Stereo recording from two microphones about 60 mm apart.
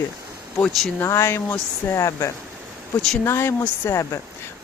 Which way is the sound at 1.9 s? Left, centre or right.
Left.